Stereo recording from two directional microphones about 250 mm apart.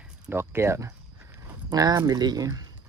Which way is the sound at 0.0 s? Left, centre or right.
Centre.